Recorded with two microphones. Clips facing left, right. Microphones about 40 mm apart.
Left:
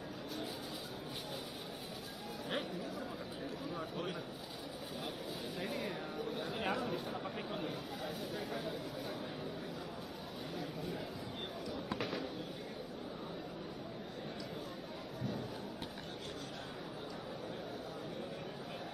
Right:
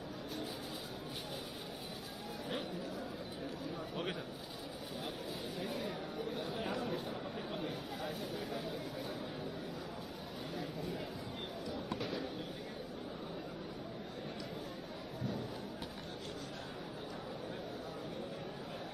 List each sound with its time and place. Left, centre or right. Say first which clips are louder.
5.6 s chatter: left 1 dB; left